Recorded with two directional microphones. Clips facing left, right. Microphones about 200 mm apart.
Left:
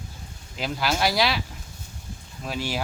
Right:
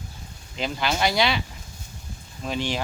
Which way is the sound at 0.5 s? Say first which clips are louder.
Even; centre (ahead or behind).